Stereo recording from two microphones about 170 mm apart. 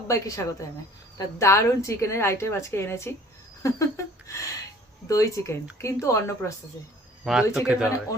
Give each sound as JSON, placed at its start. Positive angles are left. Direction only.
{"t": 0.1, "sound": "a woman's voice", "side_deg": 20}
{"t": 7.3, "sound": "speech", "side_deg": 0}